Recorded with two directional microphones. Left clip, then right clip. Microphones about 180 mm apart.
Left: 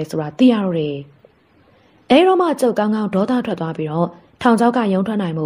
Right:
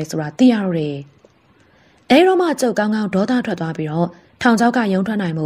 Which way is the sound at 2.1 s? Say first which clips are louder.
Even; 40° right (ahead or behind).